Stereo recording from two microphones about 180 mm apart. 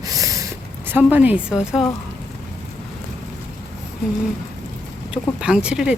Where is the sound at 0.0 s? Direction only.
20° right (ahead or behind).